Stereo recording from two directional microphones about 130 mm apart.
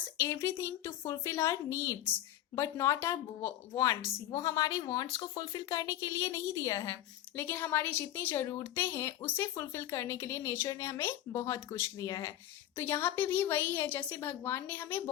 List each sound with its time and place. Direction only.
0.2 s speech: 20° left (ahead or behind)
12.7 s a woman's voice: 20° left (ahead or behind)